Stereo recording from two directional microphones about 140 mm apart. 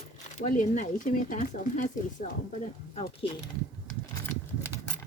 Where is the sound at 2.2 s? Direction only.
65° left (ahead or behind).